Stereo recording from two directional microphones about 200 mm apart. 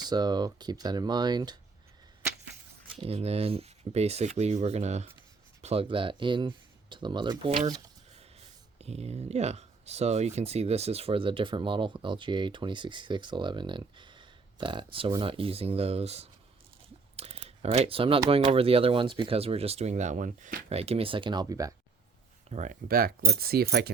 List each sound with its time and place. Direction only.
0.0 s speech: 20° right (ahead or behind)
3.0 s speech: 30° right (ahead or behind)
22.4 s speech: 35° right (ahead or behind); by 23.9 s 50° right (ahead or behind)